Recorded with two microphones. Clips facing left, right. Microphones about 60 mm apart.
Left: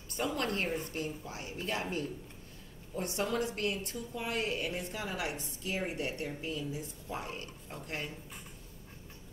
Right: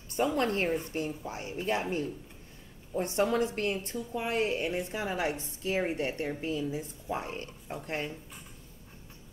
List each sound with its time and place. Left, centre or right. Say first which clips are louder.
0.3 s a woman's voice: right 3 dB; right